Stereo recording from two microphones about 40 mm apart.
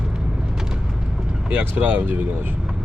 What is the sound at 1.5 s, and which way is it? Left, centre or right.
Speech, right.